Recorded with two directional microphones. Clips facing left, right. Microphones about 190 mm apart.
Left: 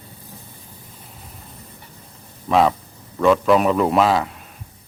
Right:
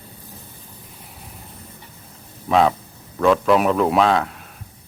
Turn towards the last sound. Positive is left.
turn(degrees=0)  # may be behind; listen again after turning